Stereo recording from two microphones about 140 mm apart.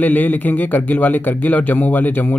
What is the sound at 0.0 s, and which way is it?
Speech, 10° left (ahead or behind).